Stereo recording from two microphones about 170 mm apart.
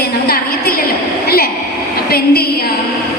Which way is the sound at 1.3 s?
65° left (ahead or behind).